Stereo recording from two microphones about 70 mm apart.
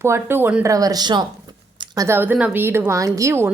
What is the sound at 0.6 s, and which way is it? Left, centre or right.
Speech, right.